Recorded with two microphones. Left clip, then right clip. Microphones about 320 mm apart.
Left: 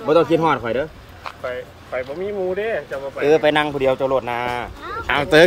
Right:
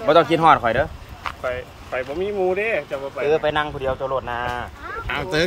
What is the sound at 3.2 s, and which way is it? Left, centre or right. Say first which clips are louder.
Speech: left 5 dB; left.